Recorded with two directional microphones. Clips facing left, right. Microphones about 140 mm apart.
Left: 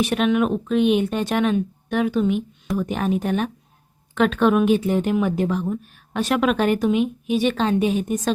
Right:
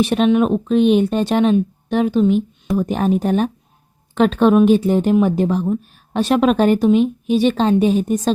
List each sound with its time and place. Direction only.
0.0 s speech: 30° right (ahead or behind)